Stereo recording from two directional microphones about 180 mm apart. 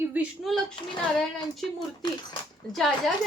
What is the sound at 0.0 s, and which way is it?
Speech, 10° right (ahead or behind).